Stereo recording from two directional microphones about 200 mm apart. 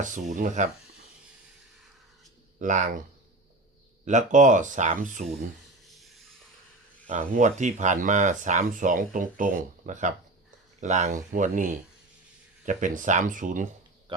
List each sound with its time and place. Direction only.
0.3 s speech: 40° right (ahead or behind)
2.6 s speech: 40° right (ahead or behind)
4.0 s speech: 35° right (ahead or behind)
7.1 s speech: 40° right (ahead or behind)